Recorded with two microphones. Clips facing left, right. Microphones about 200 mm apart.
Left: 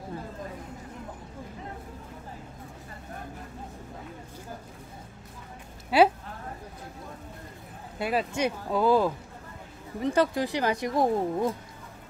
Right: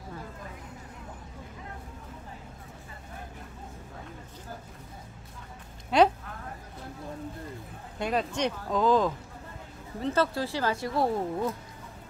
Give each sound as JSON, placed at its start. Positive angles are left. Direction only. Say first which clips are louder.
{"t": 5.9, "sound": "speech", "louder": "left 1 dB", "side_deg": 5}
{"t": 8.0, "sound": "speech", "louder": "left 1 dB", "side_deg": 5}